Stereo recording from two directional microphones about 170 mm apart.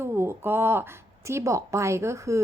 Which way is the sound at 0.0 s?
15° right (ahead or behind).